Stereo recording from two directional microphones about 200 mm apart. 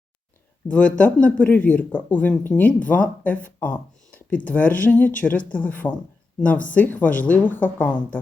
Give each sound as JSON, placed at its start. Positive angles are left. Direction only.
{"t": 0.7, "sound": "speech", "side_deg": 5}
{"t": 5.4, "sound": "speech", "side_deg": 40}
{"t": 5.6, "sound": "speech", "side_deg": 10}